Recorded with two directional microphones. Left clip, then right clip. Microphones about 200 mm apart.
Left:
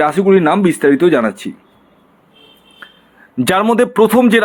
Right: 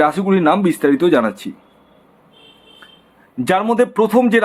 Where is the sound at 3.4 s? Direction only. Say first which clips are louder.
Left 3 dB; 25° left (ahead or behind).